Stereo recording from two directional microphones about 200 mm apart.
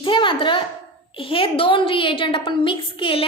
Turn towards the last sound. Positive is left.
turn(degrees=25)  # may be behind; listen again after turning